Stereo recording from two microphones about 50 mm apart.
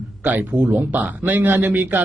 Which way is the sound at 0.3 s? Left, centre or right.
Right.